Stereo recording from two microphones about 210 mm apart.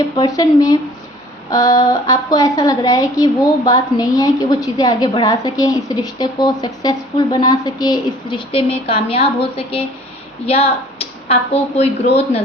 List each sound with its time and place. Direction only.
0.2 s a woman's voice: 15° left (ahead or behind)